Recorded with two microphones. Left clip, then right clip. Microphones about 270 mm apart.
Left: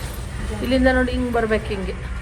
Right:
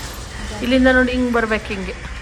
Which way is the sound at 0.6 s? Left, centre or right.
Centre.